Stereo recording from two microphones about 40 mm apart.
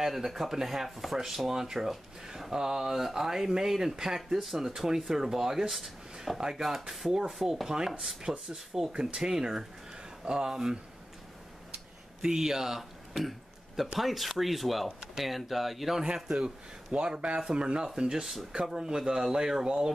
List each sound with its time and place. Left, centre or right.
0.0 s speech: centre
11.7 s throat clearing: centre
13.7 s speech: centre
16.3 s speech: centre